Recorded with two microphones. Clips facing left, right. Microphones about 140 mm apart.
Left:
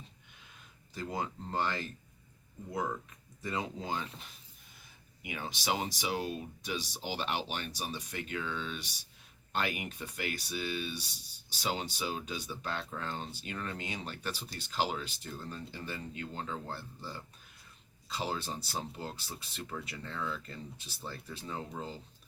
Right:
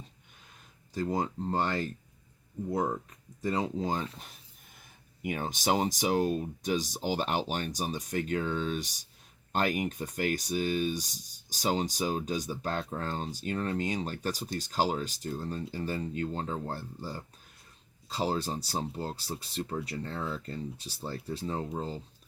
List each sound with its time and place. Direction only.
0.9 s speech: 40° right (ahead or behind)